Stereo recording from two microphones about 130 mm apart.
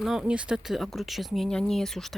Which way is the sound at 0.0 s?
5° right (ahead or behind).